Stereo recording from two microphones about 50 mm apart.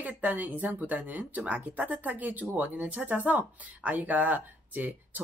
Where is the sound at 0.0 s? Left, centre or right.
Right.